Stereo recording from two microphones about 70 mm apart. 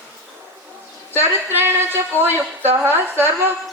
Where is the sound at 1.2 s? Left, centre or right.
Right.